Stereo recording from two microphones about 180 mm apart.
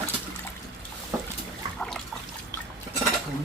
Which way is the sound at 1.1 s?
15° right (ahead or behind).